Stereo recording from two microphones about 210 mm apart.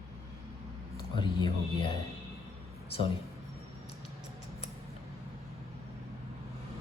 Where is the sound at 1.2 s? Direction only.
20° left (ahead or behind).